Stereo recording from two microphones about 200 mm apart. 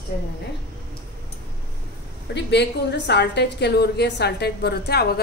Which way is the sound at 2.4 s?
60° left (ahead or behind).